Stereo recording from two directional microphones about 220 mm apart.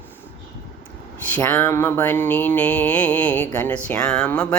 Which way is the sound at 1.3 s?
5° left (ahead or behind).